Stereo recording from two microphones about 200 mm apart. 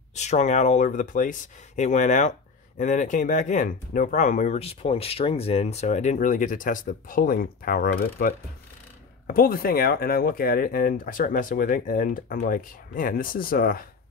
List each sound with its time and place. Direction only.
0.1 s speech: 35° left (ahead or behind)